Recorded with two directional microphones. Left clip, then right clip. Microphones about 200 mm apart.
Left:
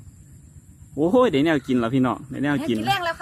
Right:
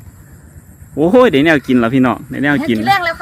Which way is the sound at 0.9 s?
Centre (ahead or behind).